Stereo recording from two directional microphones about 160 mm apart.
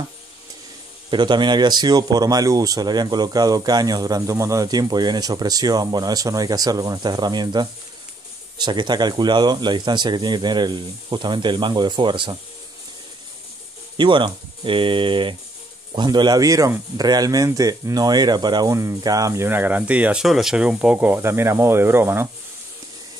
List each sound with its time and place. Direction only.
1.1 s speech: 30° right (ahead or behind)
13.9 s speech: 30° right (ahead or behind); by 22.3 s 15° right (ahead or behind)